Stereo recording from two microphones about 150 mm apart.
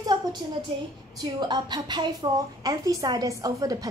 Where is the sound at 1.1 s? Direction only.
30° right (ahead or behind).